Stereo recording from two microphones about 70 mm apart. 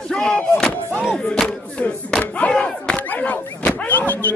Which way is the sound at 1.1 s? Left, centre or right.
Centre.